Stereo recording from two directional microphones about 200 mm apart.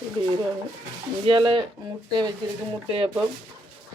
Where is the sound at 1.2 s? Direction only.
25° right (ahead or behind).